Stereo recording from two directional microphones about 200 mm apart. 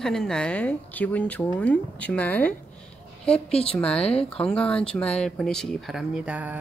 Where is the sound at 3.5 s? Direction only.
30° left (ahead or behind).